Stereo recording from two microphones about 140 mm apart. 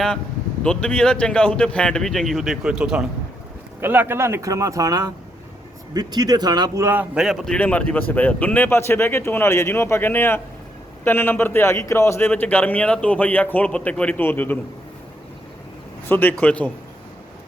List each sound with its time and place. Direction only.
0.6 s speech: 5° left (ahead or behind); by 6.8 s 30° right (ahead or behind)
6.8 s a man's voice: 10° right (ahead or behind); by 14.6 s 15° left (ahead or behind)
16.0 s a man's voice: 10° left (ahead or behind)